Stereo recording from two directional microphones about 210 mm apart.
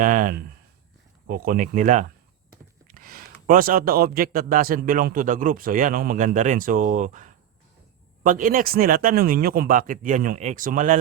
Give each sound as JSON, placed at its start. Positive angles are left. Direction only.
{"t": 0.0, "sound": "a man's voice", "side_deg": -40}
{"t": 2.5, "sound": "a sound", "side_deg": -45}
{"t": 3.4, "sound": "a man's voice", "side_deg": -40}